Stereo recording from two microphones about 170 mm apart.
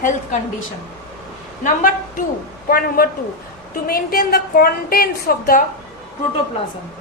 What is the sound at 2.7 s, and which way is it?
A woman's voice, 55° left (ahead or behind).